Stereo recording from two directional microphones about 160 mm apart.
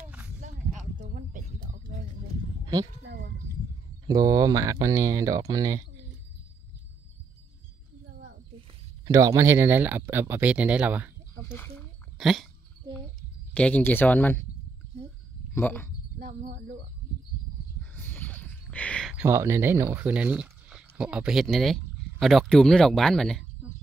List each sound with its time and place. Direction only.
1.1 s a sound: 60° right (ahead or behind)
4.0 s speech: 25° right (ahead or behind)
9.0 s speech: 20° right (ahead or behind)
11.4 s speech: 15° left (ahead or behind)
12.2 s speech: centre (ahead or behind)
13.5 s speech: 10° left (ahead or behind)
15.5 s speech: 15° left (ahead or behind)
16.2 s wind chime: 85° right
17.9 s a sound: 10° left (ahead or behind)
19.1 s speech: 15° right (ahead or behind); by 23.4 s centre (ahead or behind)